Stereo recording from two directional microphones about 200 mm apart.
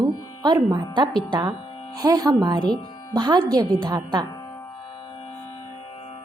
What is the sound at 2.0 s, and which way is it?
Speech, 20° right (ahead or behind).